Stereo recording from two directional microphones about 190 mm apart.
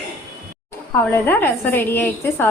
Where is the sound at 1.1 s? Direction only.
10° left (ahead or behind).